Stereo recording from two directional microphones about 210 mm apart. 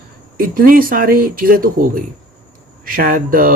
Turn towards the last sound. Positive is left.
turn(degrees=-40)  # may be behind; listen again after turning